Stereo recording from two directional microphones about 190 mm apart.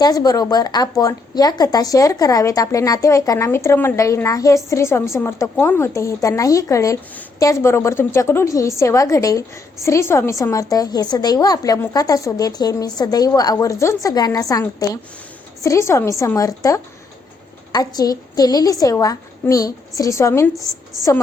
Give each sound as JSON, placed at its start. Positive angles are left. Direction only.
{"t": 0.0, "sound": "a woman's voice", "side_deg": 20}